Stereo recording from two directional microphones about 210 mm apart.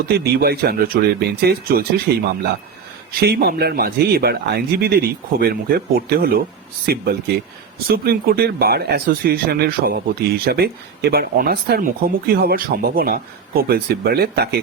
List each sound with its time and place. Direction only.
0.3 s speech: 50° right (ahead or behind)